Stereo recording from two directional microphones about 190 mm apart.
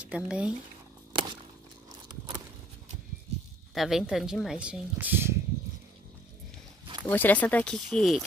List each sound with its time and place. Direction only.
0.0 s speech: 5° right (ahead or behind)
1.1 s a sound: 25° right (ahead or behind)
3.7 s speech: centre (ahead or behind)
7.1 s speech: 10° left (ahead or behind)